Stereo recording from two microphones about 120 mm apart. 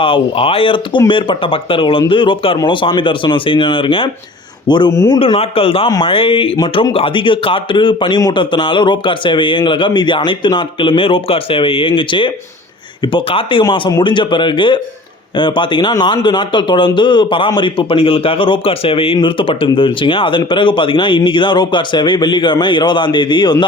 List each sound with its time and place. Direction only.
0.0 s speech: 50° left (ahead or behind)